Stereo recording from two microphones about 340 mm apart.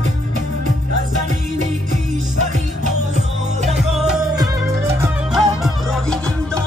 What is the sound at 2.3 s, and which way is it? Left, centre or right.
Music, right.